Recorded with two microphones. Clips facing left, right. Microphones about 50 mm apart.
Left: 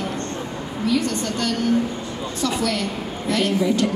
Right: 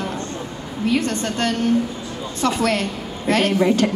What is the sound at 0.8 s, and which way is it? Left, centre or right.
Speech, right.